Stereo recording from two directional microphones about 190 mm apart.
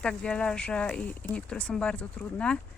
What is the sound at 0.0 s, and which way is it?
Speech, 5° left (ahead or behind).